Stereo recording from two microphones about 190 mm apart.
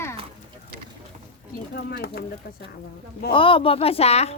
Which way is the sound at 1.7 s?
55° left (ahead or behind).